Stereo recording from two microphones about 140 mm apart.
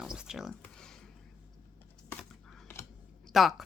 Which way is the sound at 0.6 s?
5° left (ahead or behind).